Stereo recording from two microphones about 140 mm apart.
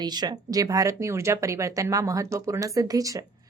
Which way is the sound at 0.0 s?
30° right (ahead or behind).